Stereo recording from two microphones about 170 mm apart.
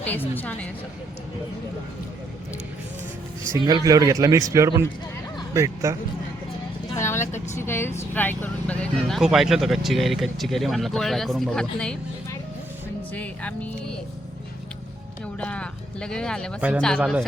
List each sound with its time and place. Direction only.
0.0 s speech: 10° left (ahead or behind)
3.7 s a man's voice: 20° right (ahead or behind)
6.9 s vehicle: 15° left (ahead or behind)
7.6 s speech: 15° left (ahead or behind)
13.1 s speech: 10° left (ahead or behind)
15.4 s speech: 5° left (ahead or behind)
16.6 s speech: 10° right (ahead or behind)